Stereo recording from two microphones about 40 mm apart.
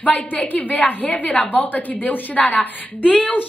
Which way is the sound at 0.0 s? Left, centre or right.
Left.